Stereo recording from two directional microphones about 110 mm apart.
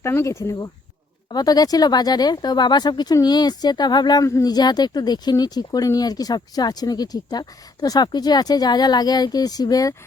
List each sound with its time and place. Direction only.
0.0 s speech: 25° left (ahead or behind)
1.3 s speech: 35° left (ahead or behind)